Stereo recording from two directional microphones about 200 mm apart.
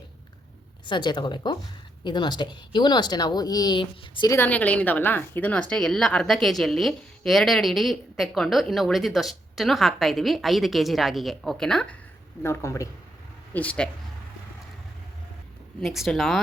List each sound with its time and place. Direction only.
0.9 s a woman's voice: 25° left (ahead or behind); by 11.9 s 5° left (ahead or behind)
12.4 s speech: 15° left (ahead or behind)
15.8 s speech: centre (ahead or behind)